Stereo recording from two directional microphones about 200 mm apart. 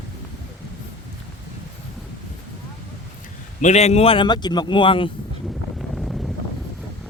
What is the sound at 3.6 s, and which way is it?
Speech, 35° left (ahead or behind).